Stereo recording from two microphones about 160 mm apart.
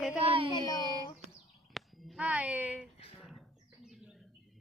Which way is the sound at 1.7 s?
Centre (ahead or behind).